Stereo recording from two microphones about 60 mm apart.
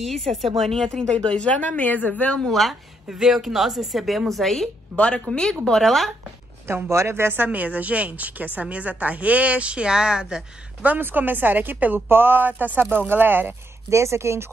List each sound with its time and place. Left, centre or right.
0.0 s a woman's voice: centre; by 2.4 s left
2.4 s a woman's voice: centre
4.9 s speech: centre
5.7 s a woman's voice: centre
6.7 s a woman's voice: right
7.4 s a woman's voice: right
10.8 s a woman's voice: right
13.8 s a woman's voice: right